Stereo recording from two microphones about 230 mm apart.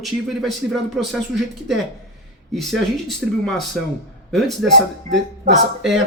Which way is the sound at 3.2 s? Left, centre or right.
Centre.